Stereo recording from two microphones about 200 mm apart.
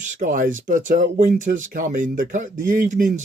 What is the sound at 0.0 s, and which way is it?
Speech, 40° right (ahead or behind).